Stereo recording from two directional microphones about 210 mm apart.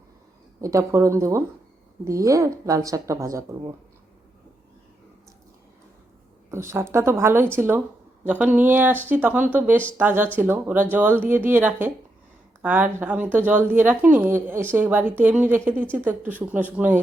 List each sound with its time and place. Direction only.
0.6 s a woman's voice: 15° right (ahead or behind)
6.5 s a woman's voice: 10° right (ahead or behind)